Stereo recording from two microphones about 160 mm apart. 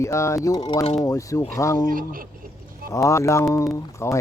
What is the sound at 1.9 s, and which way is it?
Speech, 60° right (ahead or behind).